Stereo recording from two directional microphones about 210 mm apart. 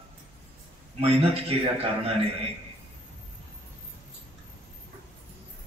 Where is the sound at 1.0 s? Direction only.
30° right (ahead or behind).